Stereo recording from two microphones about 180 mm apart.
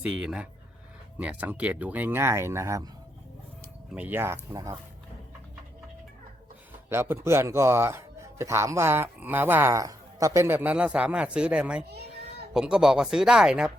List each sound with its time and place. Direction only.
0.0 s speech: 5° right (ahead or behind)
3.9 s speech: 10° right (ahead or behind)
6.9 s speech: 15° right (ahead or behind)